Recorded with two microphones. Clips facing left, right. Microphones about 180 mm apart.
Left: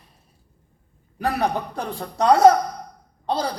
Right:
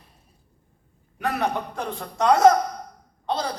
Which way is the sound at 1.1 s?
35° left (ahead or behind).